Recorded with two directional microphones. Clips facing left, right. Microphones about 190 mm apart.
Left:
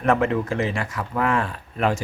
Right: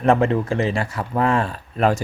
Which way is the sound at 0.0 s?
30° right (ahead or behind).